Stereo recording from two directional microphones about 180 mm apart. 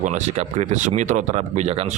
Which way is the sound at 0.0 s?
40° right (ahead or behind).